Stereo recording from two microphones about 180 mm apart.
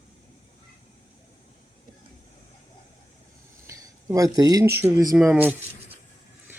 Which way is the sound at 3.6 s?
15° right (ahead or behind).